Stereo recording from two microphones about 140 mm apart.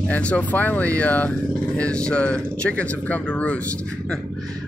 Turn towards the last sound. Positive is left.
turn(degrees=10)  # may be behind; listen again after turning